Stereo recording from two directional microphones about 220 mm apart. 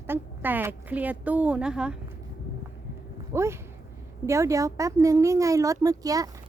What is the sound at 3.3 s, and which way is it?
A woman's voice, 10° right (ahead or behind).